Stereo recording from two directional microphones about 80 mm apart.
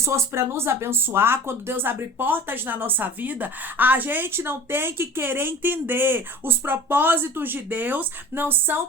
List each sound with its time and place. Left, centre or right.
0.0 s speech: right